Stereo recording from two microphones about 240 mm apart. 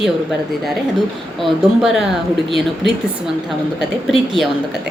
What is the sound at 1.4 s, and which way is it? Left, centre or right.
Speech, centre.